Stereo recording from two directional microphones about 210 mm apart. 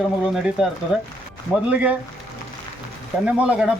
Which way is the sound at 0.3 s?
Centre (ahead or behind).